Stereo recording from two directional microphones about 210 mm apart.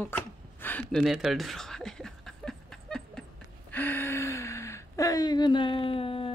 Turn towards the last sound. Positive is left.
turn(degrees=25)  # may be behind; listen again after turning